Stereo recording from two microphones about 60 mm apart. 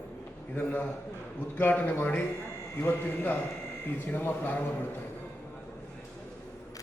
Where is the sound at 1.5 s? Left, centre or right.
Left.